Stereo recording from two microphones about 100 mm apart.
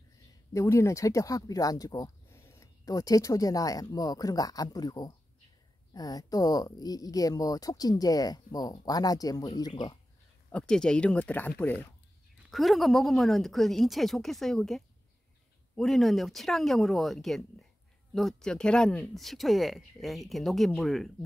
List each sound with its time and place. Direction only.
0.5 s speech: 30° left (ahead or behind)
2.3 s speech: 25° left (ahead or behind); by 9.9 s 40° left (ahead or behind)
10.5 s speech: 10° left (ahead or behind)
12.4 s speech: centre (ahead or behind)